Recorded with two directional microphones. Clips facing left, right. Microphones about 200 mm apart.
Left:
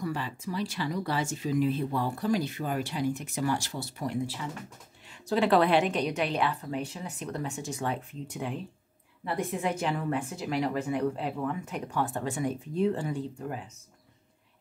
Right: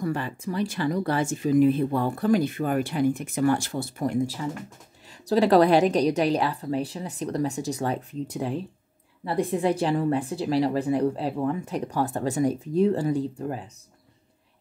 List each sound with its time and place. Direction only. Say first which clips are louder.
0.0 s a woman's voice: right 5 dB; 50° right (ahead or behind); by 13.7 s 35° right (ahead or behind)